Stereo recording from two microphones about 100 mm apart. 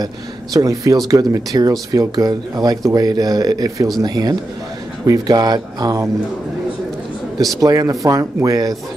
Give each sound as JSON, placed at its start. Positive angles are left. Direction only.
{"t": 0.0, "sound": "speech", "side_deg": -35}
{"t": 7.6, "sound": "speech", "side_deg": -35}